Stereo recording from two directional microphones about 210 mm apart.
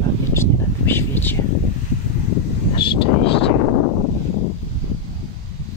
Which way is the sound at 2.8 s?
25° left (ahead or behind).